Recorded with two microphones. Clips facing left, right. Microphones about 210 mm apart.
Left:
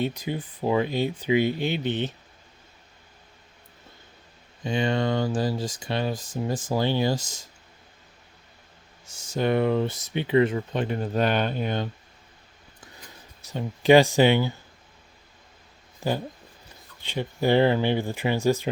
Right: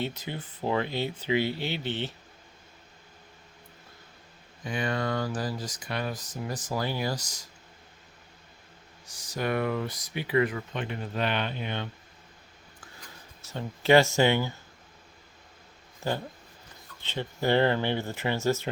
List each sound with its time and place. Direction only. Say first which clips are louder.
0.0 s speech: left 6 dB; 15° left (ahead or behind)
4.6 s speech: left 5 dB; 25° left (ahead or behind)
9.0 s speech: left 6 dB; 25° left (ahead or behind); by 11.9 s 40° left (ahead or behind)
12.8 s a sound: left 2 dB; 20° left (ahead or behind)
16.0 s speech: left 4 dB; 15° left (ahead or behind)